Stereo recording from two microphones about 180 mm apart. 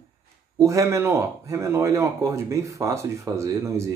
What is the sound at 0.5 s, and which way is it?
Speech, 20° right (ahead or behind).